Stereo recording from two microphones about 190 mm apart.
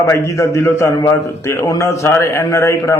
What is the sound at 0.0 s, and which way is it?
A man's voice, 15° left (ahead or behind).